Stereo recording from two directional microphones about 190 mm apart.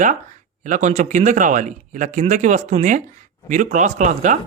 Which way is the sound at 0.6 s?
40° right (ahead or behind).